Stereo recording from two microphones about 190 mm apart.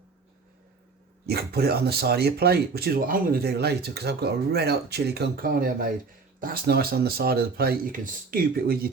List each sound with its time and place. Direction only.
1.3 s speech: 55° right (ahead or behind)